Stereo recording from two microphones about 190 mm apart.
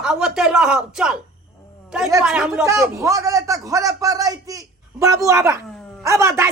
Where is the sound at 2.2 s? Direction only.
5° right (ahead or behind).